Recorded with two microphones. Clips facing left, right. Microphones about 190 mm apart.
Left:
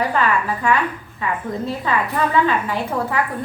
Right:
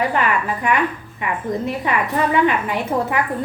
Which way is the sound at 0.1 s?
20° right (ahead or behind).